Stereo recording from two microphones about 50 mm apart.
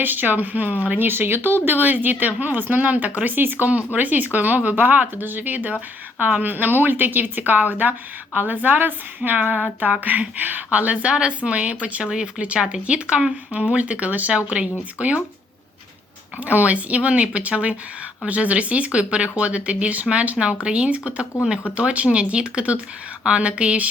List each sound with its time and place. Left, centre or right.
0.0 s speech: right
12.0 s speech: centre
16.4 s speech: right